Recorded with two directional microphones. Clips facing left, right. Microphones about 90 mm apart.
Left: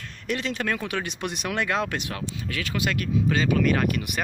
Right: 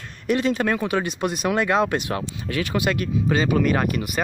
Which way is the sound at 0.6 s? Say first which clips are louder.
Right 6 dB; 20° right (ahead or behind).